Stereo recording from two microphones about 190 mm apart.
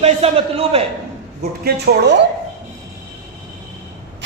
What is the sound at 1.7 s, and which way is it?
Speech, 60° right (ahead or behind).